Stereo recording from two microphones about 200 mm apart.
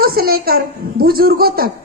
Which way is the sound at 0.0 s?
50° right (ahead or behind).